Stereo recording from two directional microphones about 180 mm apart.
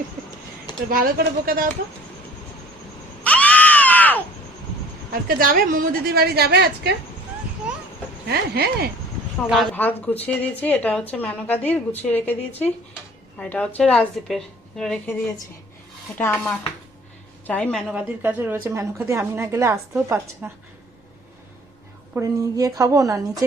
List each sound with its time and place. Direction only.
0.9 s speech: 55° right (ahead or behind)
3.2 s screaming: 10° left (ahead or behind)
5.3 s a woman's voice: 55° right (ahead or behind)
8.3 s a woman's voice: 60° right (ahead or behind)
9.7 s a woman's voice: 10° left (ahead or behind)
16.1 s a woman's voice: 10° left (ahead or behind)
18.2 s a woman's voice: 10° right (ahead or behind)
22.1 s a woman's voice: 15° right (ahead or behind)